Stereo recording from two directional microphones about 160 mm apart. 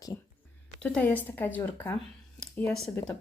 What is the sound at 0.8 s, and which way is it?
Speech, 5° left (ahead or behind).